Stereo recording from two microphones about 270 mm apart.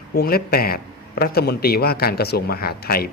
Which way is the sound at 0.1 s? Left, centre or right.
Left.